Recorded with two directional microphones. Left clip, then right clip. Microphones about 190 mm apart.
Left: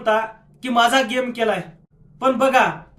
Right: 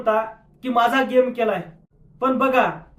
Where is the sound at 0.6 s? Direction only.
20° left (ahead or behind).